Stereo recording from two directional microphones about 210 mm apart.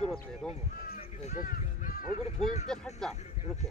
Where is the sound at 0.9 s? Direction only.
40° left (ahead or behind).